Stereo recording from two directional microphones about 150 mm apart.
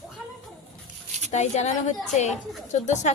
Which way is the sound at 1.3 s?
50° left (ahead or behind).